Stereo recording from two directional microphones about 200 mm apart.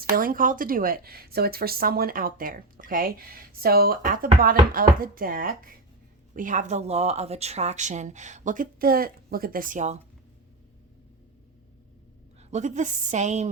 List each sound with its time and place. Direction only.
0.0 s speech: 45° right (ahead or behind)
12.4 s speech: 35° right (ahead or behind)